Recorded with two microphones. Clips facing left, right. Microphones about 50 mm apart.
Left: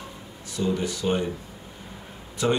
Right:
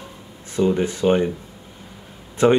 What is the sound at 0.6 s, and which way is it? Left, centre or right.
Speech, right.